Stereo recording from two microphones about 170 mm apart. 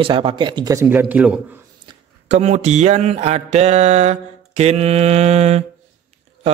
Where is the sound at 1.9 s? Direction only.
40° right (ahead or behind).